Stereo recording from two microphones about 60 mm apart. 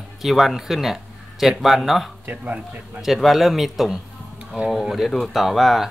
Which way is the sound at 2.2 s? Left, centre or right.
Right.